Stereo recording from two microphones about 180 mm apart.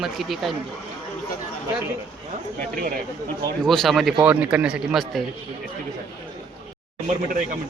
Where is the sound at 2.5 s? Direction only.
50° right (ahead or behind).